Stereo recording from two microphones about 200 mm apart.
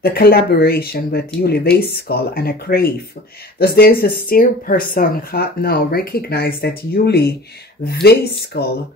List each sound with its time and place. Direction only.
0.0 s speech: 50° left (ahead or behind)